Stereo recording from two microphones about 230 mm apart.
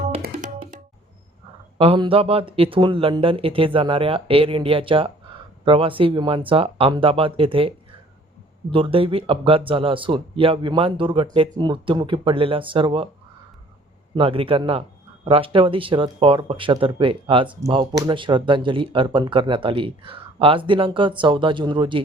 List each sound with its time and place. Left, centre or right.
1.8 s speech: right
8.7 s speech: right
14.2 s speech: right